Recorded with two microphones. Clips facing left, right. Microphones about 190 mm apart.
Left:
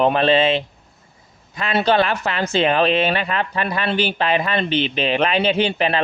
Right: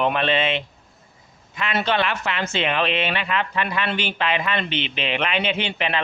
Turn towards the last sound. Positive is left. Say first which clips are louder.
# left 6 dB
turn(degrees=35)  # may be behind; listen again after turning